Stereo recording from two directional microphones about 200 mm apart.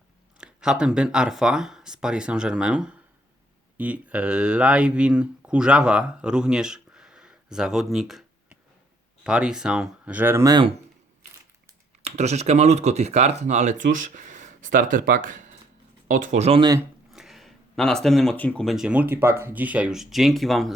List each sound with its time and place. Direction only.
0.3 s speech: 5° right (ahead or behind); by 10.8 s 25° right (ahead or behind)
12.0 s speech: 35° right (ahead or behind)
17.1 s speech: centre (ahead or behind)